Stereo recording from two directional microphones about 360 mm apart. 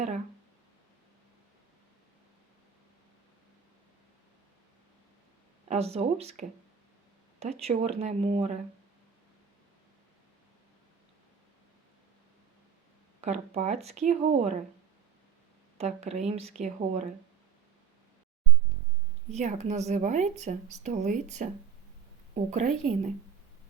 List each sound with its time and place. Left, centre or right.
5.6 s speech: centre
13.2 s speech: centre
16.0 s speech: centre
19.3 s speech: centre